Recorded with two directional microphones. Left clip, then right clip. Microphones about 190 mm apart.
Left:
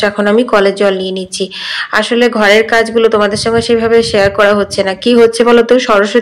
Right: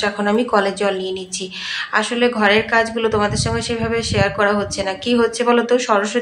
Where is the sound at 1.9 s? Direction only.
25° left (ahead or behind).